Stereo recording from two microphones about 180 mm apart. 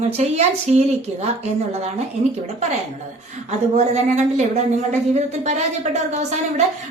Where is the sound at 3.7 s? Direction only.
40° right (ahead or behind).